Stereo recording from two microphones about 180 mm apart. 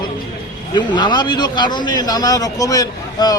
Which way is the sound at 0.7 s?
25° left (ahead or behind).